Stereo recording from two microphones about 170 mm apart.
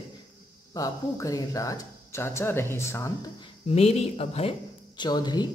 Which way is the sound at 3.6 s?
40° left (ahead or behind).